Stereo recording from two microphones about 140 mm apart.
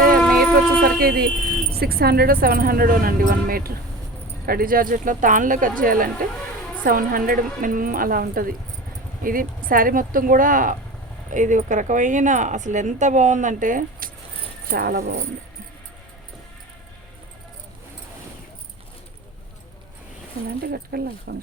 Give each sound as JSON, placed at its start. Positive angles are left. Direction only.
{"t": 0.3, "sound": "music", "side_deg": -90}
{"t": 1.8, "sound": "speech", "side_deg": -90}
{"t": 11.3, "sound": "speech", "side_deg": -65}
{"t": 14.7, "sound": "speech", "side_deg": -90}
{"t": 20.6, "sound": "speech", "side_deg": -90}